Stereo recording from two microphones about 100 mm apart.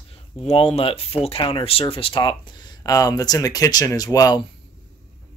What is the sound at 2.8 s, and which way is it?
Speech, 35° left (ahead or behind).